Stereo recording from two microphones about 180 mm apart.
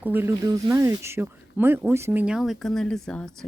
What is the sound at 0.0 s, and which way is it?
Speech, 10° right (ahead or behind).